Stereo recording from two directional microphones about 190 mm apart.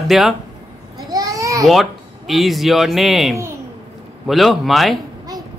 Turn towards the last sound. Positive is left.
turn(degrees=0)  # may be behind; listen again after turning